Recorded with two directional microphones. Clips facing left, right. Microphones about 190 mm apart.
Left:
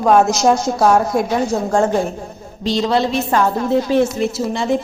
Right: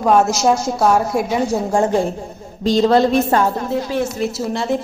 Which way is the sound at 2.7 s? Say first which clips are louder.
Right 4 dB; 45° right (ahead or behind).